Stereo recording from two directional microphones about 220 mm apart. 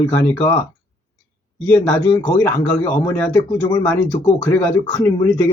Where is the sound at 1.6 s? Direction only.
10° left (ahead or behind).